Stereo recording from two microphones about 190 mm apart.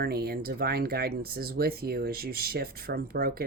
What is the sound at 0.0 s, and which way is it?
Speech, 55° right (ahead or behind).